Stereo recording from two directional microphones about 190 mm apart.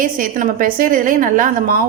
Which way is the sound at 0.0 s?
45° right (ahead or behind).